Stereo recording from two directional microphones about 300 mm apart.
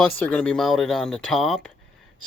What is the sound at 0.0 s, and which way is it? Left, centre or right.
Speech, centre.